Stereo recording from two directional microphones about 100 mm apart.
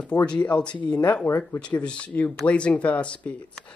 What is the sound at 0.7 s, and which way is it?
Speech, 45° left (ahead or behind).